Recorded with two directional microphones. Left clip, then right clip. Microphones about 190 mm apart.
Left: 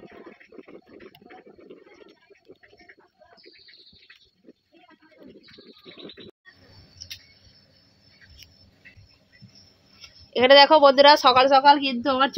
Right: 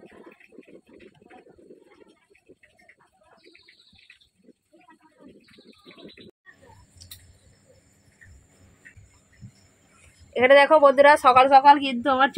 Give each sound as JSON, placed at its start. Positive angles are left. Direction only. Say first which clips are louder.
{"t": 10.3, "sound": "a woman's voice", "louder": "left 1 dB", "side_deg": 20}